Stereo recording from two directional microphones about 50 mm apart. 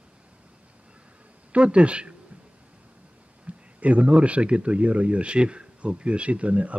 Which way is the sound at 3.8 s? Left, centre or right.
Right.